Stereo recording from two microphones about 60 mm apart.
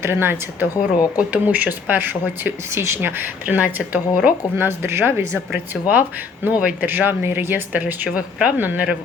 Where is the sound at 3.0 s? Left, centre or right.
Right.